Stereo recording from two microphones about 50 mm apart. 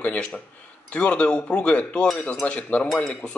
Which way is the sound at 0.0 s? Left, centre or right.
Left.